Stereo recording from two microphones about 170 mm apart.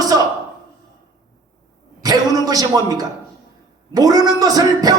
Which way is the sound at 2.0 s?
20° right (ahead or behind).